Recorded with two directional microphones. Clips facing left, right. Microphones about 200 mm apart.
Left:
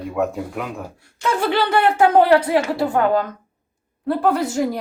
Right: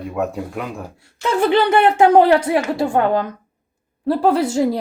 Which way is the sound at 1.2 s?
20° right (ahead or behind).